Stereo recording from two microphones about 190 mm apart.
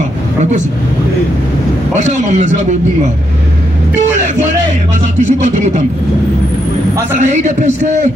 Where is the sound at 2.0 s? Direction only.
40° right (ahead or behind).